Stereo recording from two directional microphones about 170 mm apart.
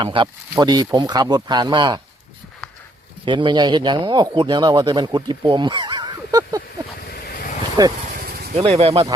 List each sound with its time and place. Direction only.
0.0 s speech: 30° right (ahead or behind)
3.2 s speech: 25° right (ahead or behind)
7.1 s vehicle: 60° left (ahead or behind)
8.0 s a sound: 55° right (ahead or behind)
8.5 s speech: 40° right (ahead or behind)